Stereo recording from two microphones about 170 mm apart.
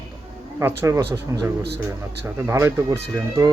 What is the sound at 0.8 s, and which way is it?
Speech, 15° right (ahead or behind).